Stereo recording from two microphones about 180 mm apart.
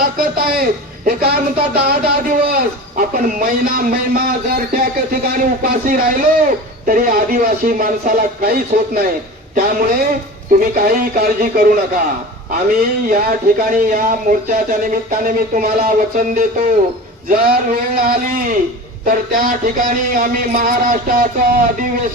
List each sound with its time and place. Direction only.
0.0 s a woman's voice: 55° right (ahead or behind)
13.1 s a woman's voice: 50° right (ahead or behind)